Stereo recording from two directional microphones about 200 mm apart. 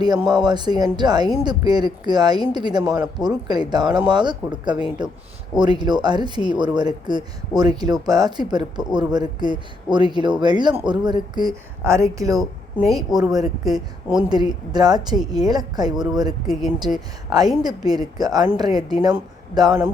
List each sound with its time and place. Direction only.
0.0 s a woman's voice: 20° right (ahead or behind)
13.7 s speech: 5° right (ahead or behind)
14.3 s speech: 20° right (ahead or behind)
16.5 s speech: centre (ahead or behind)
17.6 s speech: 20° right (ahead or behind)